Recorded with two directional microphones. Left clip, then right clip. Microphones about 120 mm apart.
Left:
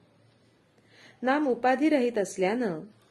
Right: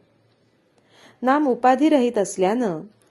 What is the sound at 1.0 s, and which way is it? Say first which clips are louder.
A woman's voice: right 7 dB; 40° right (ahead or behind).